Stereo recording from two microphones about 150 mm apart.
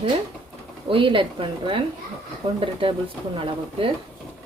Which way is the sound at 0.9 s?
35° right (ahead or behind).